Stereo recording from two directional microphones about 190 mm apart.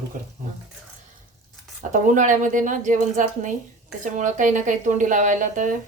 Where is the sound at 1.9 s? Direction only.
40° right (ahead or behind).